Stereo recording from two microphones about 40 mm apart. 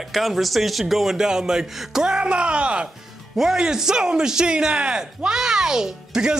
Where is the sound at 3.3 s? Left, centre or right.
Centre.